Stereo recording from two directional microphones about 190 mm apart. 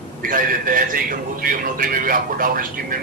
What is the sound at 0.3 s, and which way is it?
Speech, 45° right (ahead or behind).